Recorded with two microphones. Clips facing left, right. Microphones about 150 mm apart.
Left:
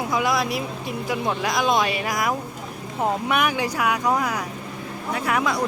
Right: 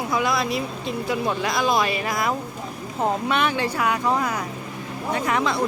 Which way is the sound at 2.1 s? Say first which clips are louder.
Even; 10° left (ahead or behind).